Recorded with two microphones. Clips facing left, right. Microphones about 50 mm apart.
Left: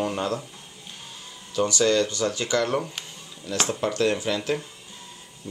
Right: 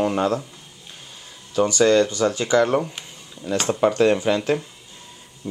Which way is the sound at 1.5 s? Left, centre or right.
Centre.